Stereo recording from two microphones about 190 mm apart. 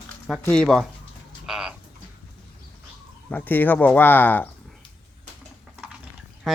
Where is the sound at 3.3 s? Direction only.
10° left (ahead or behind).